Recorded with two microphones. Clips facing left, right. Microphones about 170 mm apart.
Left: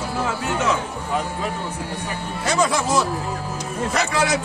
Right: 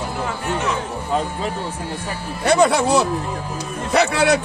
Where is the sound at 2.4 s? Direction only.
65° right (ahead or behind).